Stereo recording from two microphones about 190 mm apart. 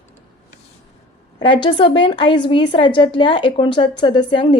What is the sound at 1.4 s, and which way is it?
A woman's voice, 25° left (ahead or behind).